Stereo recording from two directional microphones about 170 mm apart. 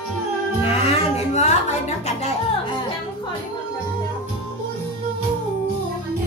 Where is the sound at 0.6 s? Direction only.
40° left (ahead or behind).